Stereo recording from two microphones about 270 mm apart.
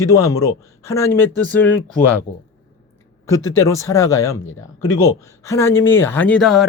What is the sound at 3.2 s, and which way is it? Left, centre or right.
A man's voice, centre.